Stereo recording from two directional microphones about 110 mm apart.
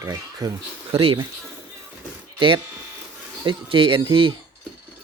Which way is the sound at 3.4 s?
50° right (ahead or behind).